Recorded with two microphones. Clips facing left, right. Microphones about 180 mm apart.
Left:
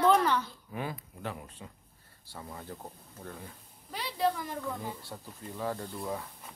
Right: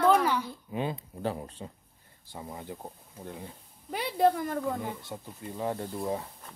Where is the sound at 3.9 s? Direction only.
55° right (ahead or behind).